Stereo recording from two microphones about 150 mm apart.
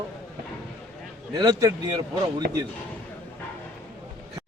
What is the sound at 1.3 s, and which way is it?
Speech, 25° right (ahead or behind).